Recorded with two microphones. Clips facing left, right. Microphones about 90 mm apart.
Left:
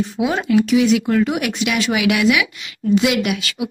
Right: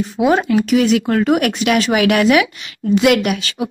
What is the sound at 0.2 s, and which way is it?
Speech, 45° right (ahead or behind).